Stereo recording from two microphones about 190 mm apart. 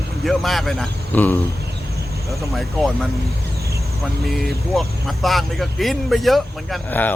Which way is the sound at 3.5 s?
15° right (ahead or behind).